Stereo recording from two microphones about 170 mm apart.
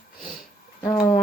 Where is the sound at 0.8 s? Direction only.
15° left (ahead or behind).